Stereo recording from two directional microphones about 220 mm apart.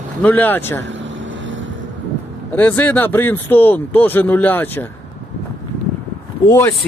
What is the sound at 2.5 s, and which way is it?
Speech, 5° left (ahead or behind).